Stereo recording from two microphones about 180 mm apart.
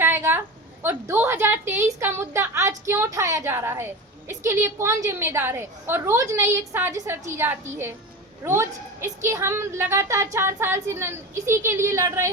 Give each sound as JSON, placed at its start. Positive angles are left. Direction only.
{"t": 0.0, "sound": "a woman's voice", "side_deg": -10}